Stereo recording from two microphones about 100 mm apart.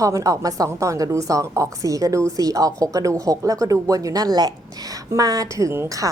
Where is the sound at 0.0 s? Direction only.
35° right (ahead or behind).